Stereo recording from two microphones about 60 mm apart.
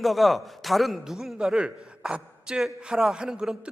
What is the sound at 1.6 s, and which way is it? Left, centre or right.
A man's voice, centre.